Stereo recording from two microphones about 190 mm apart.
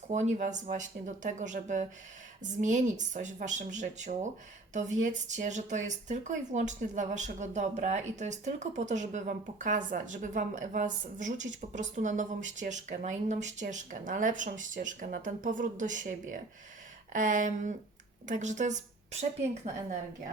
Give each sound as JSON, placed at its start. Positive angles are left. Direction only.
{"t": 0.1, "sound": "a woman's voice", "side_deg": -40}